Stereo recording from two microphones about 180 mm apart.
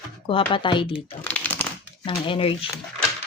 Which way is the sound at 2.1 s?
30° left (ahead or behind).